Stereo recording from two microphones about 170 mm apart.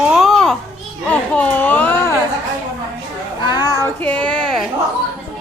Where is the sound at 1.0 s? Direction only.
10° left (ahead or behind).